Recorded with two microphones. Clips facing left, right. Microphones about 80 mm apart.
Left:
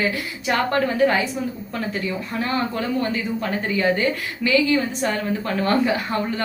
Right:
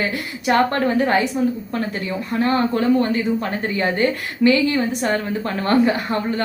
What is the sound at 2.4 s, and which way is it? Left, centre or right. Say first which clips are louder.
A woman's voice: right 6 dB; right.